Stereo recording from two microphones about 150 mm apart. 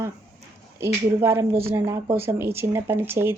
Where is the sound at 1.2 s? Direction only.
15° right (ahead or behind).